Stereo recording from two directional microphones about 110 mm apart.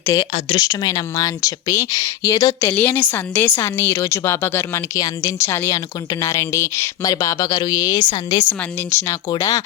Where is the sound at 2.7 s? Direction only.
15° left (ahead or behind).